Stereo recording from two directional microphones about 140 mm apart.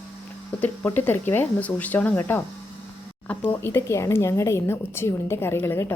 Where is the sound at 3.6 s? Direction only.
15° left (ahead or behind).